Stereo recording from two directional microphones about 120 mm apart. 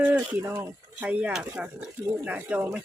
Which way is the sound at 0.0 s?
10° right (ahead or behind).